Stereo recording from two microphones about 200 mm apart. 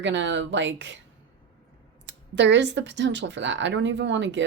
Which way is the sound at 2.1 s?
65° right (ahead or behind).